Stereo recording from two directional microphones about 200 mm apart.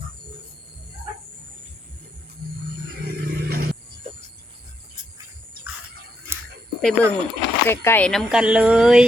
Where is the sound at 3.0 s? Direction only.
50° right (ahead or behind).